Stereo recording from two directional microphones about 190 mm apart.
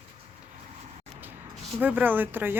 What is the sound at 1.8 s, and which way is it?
Speech, 10° right (ahead or behind).